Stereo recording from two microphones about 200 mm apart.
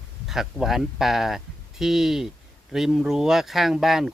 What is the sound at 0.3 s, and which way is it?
Speech, centre (ahead or behind).